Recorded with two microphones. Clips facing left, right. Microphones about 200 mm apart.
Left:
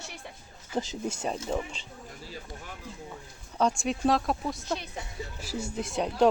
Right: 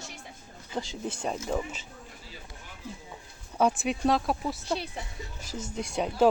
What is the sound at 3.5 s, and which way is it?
Speech, 5° right (ahead or behind).